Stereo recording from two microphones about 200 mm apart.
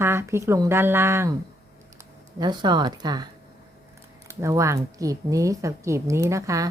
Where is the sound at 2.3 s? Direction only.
20° right (ahead or behind).